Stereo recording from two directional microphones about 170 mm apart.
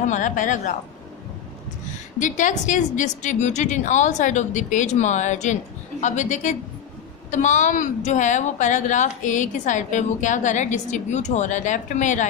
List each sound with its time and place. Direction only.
0.1 s a woman's voice: 45° left (ahead or behind)
2.1 s a woman's voice: 45° left (ahead or behind)